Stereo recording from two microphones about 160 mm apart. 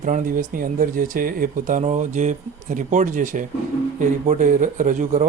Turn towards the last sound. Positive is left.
turn(degrees=-55)  # may be behind; listen again after turning